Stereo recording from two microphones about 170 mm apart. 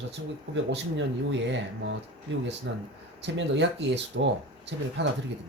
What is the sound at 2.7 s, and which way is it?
Speech, 90° right.